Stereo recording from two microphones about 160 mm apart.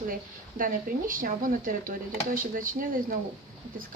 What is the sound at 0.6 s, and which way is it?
Speech, 60° right (ahead or behind).